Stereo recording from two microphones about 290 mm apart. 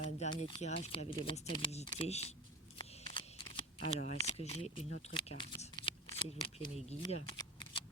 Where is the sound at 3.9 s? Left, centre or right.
Left.